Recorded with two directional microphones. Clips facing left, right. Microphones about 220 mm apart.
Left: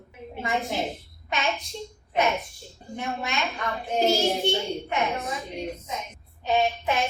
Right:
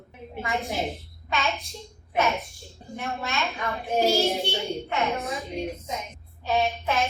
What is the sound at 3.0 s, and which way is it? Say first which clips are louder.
Speech: left 1 dB; 15° left (ahead or behind).